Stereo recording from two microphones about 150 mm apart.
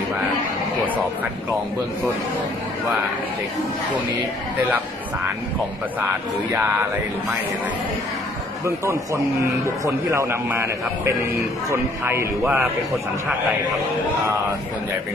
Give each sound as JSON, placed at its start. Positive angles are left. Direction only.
{"t": 8.6, "sound": "a man's voice", "side_deg": -20}